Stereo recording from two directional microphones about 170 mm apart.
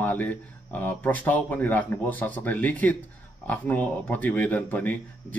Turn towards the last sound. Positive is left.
turn(degrees=10)  # may be behind; listen again after turning